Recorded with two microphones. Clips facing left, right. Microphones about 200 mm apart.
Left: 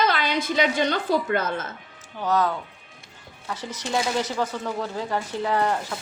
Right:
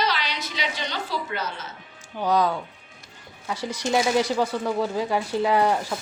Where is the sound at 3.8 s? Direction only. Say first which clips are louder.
Right 4 dB; 10° right (ahead or behind).